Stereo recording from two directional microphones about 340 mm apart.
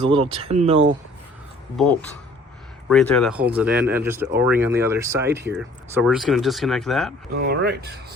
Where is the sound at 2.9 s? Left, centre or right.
Centre.